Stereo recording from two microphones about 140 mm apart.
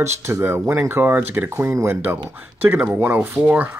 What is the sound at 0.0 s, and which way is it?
Speech, 20° right (ahead or behind).